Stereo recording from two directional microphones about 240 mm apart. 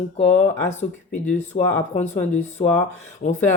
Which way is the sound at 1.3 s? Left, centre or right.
Left.